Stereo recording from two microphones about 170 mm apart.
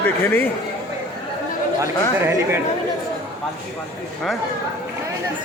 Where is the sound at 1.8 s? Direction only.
15° right (ahead or behind).